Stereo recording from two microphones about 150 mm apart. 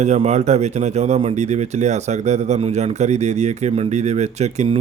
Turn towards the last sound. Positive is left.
turn(degrees=-50)  # may be behind; listen again after turning